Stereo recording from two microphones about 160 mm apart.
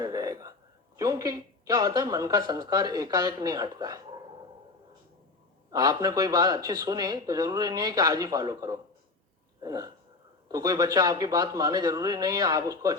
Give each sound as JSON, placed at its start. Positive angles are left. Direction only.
{"t": 0.0, "sound": "a sound", "side_deg": -25}
{"t": 0.9, "sound": "speech", "side_deg": -25}
{"t": 5.7, "sound": "speech", "side_deg": -25}
{"t": 9.6, "sound": "hiccup", "side_deg": -25}
{"t": 10.5, "sound": "speech", "side_deg": -25}